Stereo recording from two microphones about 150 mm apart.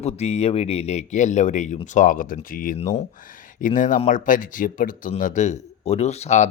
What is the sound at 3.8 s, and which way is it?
Speech, 60° left (ahead or behind).